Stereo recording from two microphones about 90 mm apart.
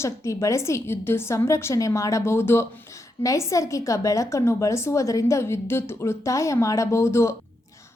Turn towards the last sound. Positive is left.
turn(degrees=30)  # may be behind; listen again after turning